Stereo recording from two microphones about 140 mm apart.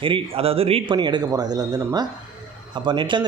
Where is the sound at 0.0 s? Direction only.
40° right (ahead or behind).